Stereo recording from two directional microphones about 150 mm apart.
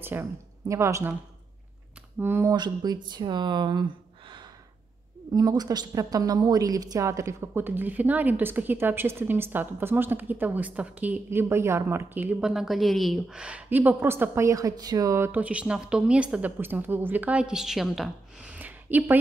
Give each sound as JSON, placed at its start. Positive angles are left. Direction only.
{"t": 0.0, "sound": "speech", "side_deg": -15}
{"t": 2.1, "sound": "a woman's voice", "side_deg": -15}
{"t": 2.5, "sound": "a woman's voice", "side_deg": -30}